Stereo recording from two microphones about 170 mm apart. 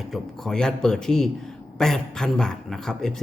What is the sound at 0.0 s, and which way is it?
A man's voice, centre (ahead or behind).